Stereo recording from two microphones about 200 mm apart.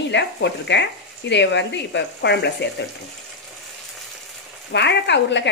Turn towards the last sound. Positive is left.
turn(degrees=60)  # may be behind; listen again after turning